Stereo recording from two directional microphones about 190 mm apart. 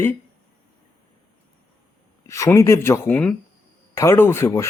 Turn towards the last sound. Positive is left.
turn(degrees=15)  # may be behind; listen again after turning